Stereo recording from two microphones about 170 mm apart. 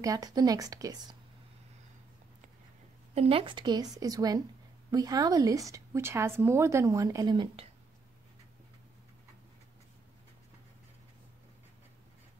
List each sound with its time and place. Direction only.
0.0 s a woman's voice: 20° right (ahead or behind)
3.2 s a woman's voice: 35° right (ahead or behind)